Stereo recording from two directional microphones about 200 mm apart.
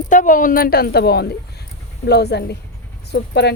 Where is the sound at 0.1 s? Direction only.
40° left (ahead or behind).